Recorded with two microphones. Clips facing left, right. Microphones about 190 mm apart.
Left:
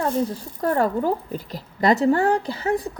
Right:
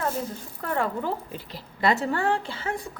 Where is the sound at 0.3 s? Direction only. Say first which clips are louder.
Left 7 dB; 40° left (ahead or behind).